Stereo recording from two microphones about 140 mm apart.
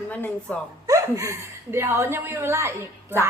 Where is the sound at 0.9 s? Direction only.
25° right (ahead or behind).